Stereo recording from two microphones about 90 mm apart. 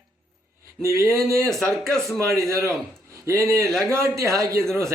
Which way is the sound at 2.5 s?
35° right (ahead or behind).